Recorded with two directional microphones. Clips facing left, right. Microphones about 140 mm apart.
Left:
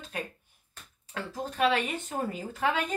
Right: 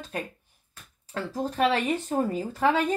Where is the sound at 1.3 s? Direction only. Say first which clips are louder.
Right 2 dB; 40° right (ahead or behind).